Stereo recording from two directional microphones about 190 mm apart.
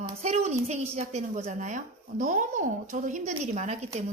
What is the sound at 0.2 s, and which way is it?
A woman's voice, 35° right (ahead or behind).